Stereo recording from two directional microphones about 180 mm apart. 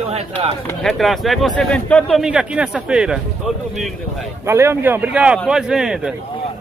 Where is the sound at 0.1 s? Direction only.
35° right (ahead or behind).